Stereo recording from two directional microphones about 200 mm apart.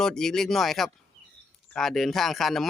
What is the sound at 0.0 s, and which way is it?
Speech, 5° left (ahead or behind).